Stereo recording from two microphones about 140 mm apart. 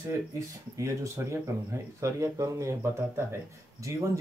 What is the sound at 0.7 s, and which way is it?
Speech, 20° right (ahead or behind).